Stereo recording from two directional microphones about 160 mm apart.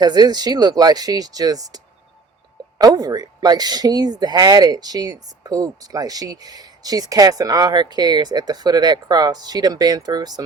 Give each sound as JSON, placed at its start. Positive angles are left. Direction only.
{"t": 0.0, "sound": "speech", "side_deg": -25}